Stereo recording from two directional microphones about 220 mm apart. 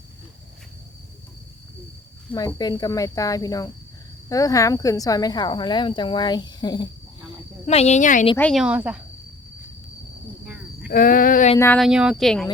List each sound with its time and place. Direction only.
2.6 s speech: 20° left (ahead or behind)
7.3 s cricket: 30° left (ahead or behind)
8.4 s speech: centre (ahead or behind)
10.4 s cricket: 5° right (ahead or behind)
10.8 s a sound: 40° left (ahead or behind)
11.5 s speech: 10° left (ahead or behind)
11.8 s speech: 5° right (ahead or behind)